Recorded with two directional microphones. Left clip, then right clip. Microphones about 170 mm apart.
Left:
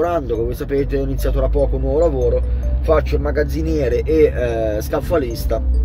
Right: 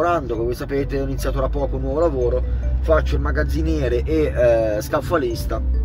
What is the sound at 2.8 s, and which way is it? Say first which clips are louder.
Speech: left 2 dB; 35° left (ahead or behind).